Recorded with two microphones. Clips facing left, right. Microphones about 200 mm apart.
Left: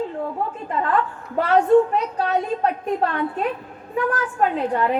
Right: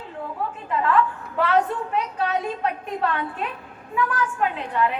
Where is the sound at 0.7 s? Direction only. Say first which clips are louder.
Right 2 dB; 40° left (ahead or behind).